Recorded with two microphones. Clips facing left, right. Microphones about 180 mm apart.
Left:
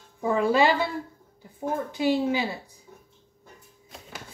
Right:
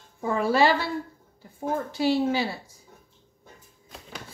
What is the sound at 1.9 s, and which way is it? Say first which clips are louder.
Speech: even; 15° left (ahead or behind).